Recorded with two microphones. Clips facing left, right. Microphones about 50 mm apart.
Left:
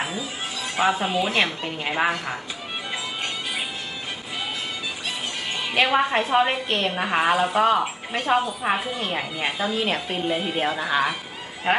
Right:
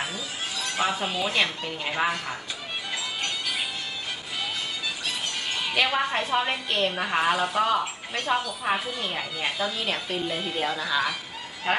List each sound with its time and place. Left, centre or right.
0.0 s speech: left
2.9 s music: centre
5.6 s a woman's voice: centre